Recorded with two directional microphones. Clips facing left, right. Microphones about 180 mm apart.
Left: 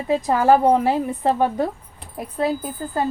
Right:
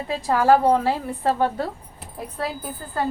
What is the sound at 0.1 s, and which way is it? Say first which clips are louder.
A woman's voice: left 2 dB; 20° left (ahead or behind).